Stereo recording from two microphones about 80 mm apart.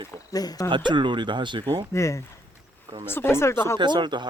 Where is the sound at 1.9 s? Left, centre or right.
Left.